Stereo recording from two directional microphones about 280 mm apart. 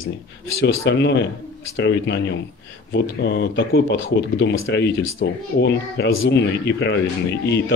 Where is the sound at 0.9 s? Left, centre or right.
Left.